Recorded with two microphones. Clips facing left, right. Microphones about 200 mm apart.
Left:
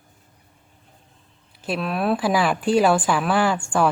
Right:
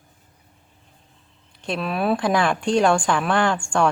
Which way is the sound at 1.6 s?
Centre (ahead or behind).